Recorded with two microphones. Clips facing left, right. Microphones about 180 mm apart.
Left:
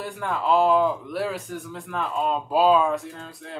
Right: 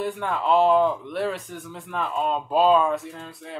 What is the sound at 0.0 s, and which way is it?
Speech, centre (ahead or behind).